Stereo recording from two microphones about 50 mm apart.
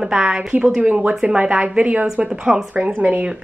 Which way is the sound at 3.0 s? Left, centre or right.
Right.